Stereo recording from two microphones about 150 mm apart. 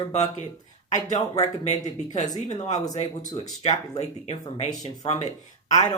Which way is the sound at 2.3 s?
30° left (ahead or behind).